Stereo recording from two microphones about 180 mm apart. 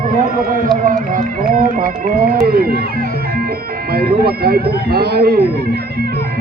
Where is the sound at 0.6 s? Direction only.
50° right (ahead or behind).